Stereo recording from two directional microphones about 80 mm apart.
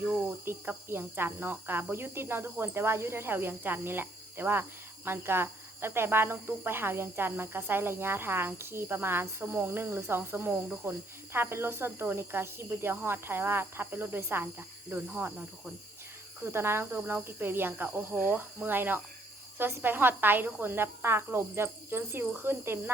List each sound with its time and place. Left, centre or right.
0.0 s speech: right
16.4 s speech: right